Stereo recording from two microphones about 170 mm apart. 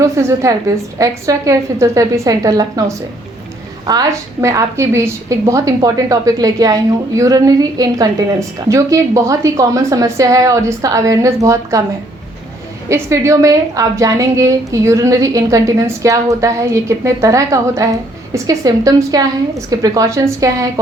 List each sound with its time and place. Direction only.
0.0 s a woman's voice: 15° right (ahead or behind)
12.9 s a woman's voice: 15° right (ahead or behind)